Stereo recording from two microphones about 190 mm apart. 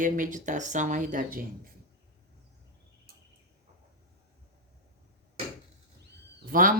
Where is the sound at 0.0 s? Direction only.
45° right (ahead or behind).